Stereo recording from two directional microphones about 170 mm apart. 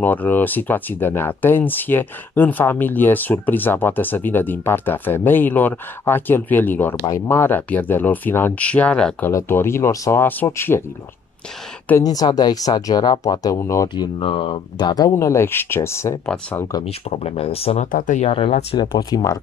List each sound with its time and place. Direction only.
0.0 s speech: 10° left (ahead or behind)
12.0 s speech: 20° left (ahead or behind)
14.2 s speech: 30° left (ahead or behind); by 16.8 s 15° left (ahead or behind)
16.8 s speech: 35° left (ahead or behind)
17.9 s speech: 45° left (ahead or behind)
18.8 s speech: 20° left (ahead or behind)